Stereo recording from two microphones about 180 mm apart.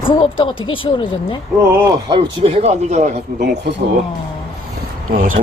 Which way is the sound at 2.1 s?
25° right (ahead or behind).